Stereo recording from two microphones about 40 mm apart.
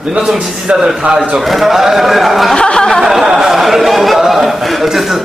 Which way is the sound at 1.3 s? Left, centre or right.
Centre.